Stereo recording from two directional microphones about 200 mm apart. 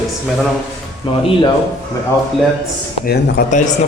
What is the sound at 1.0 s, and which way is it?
Speech, 25° left (ahead or behind).